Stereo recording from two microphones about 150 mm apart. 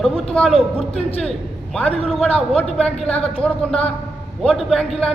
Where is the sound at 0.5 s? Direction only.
40° left (ahead or behind).